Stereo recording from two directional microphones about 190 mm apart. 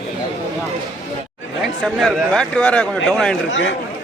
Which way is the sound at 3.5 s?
75° left (ahead or behind).